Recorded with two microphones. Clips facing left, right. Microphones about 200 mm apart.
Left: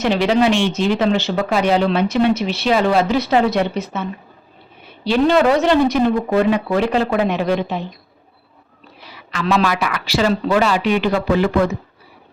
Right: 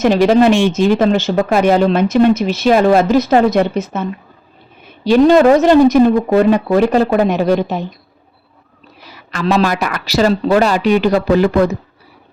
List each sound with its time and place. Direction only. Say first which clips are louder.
0.0 s speech: right 5 dB; 45° right (ahead or behind)
5.0 s speech: right 6 dB; 45° right (ahead or behind)
9.1 s a woman's voice: right 3 dB; 45° right (ahead or behind)